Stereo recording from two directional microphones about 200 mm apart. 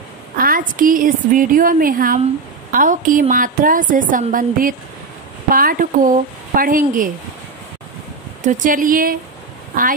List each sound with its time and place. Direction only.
0.4 s a woman's voice: 45° right (ahead or behind)
8.4 s a woman's voice: 40° right (ahead or behind)